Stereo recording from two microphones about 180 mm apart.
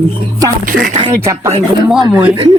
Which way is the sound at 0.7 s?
50° right (ahead or behind).